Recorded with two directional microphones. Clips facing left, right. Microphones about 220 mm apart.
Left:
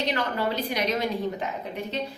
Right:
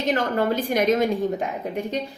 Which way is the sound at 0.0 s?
45° right (ahead or behind).